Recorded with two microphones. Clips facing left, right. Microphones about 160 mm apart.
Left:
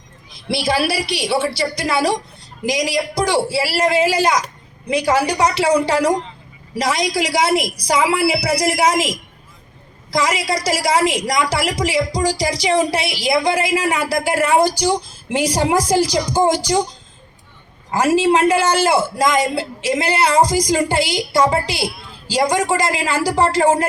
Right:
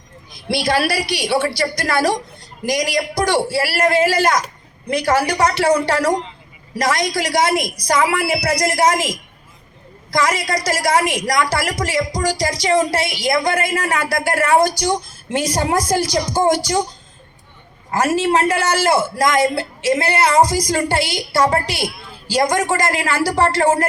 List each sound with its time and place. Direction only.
0.6 s a man's voice: 10° left (ahead or behind)
17.9 s a man's voice: 10° left (ahead or behind)